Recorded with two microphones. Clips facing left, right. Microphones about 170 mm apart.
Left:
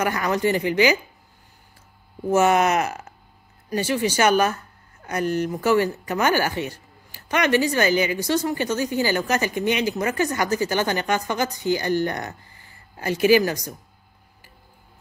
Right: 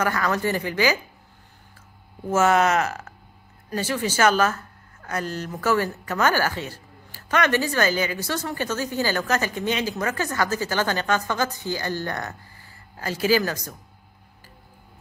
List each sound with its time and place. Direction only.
0.0 s a woman's voice: 15° left (ahead or behind)
2.3 s a woman's voice: 15° left (ahead or behind)